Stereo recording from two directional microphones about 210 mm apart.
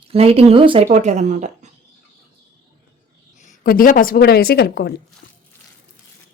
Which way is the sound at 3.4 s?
40° left (ahead or behind).